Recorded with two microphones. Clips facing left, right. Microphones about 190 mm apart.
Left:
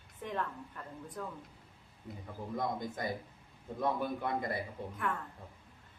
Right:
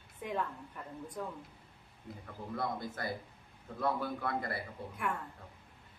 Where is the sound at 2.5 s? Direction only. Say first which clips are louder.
Left 1 dB; 15° left (ahead or behind).